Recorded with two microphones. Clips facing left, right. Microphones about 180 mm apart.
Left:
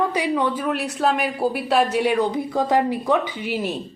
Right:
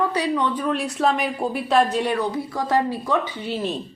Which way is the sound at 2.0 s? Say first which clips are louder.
Left 3 dB; 15° left (ahead or behind).